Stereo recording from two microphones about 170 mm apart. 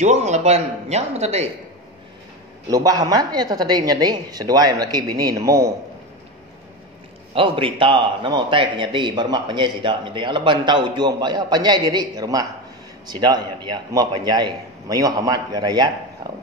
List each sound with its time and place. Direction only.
0.0 s speech: 45° right (ahead or behind)
2.7 s speech: 20° right (ahead or behind)
7.3 s speech: 30° right (ahead or behind)